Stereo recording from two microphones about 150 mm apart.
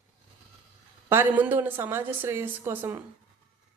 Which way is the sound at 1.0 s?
15° right (ahead or behind).